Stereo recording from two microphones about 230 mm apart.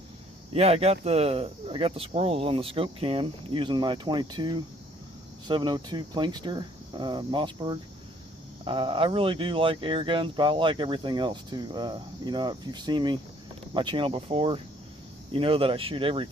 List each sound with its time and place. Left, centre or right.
0.5 s speech: right